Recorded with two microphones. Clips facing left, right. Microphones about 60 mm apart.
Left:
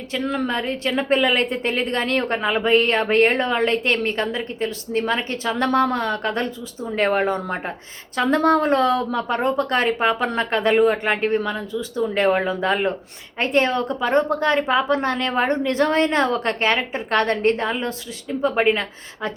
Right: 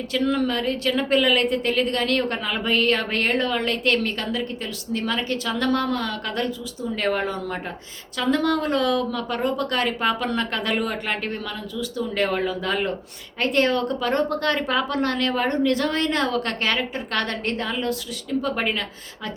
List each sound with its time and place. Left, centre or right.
0.1 s a woman's voice: left